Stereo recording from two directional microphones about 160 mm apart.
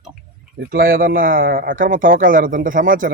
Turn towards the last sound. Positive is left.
turn(degrees=-55)  # may be behind; listen again after turning